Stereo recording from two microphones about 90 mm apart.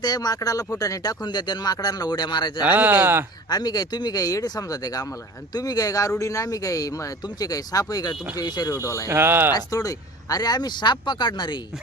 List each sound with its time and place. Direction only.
0.0 s speech: 50° left (ahead or behind)
1.2 s speech: 55° left (ahead or behind)
2.6 s speech: 20° right (ahead or behind)
3.5 s speech: 50° left (ahead or behind)
9.0 s speech: 25° right (ahead or behind)
9.5 s speech: 45° left (ahead or behind)